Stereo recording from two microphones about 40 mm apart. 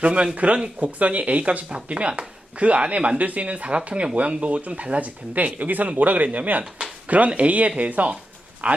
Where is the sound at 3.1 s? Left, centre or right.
Right.